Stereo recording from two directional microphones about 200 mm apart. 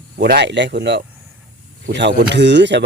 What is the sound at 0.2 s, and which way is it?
Speech, 60° right (ahead or behind).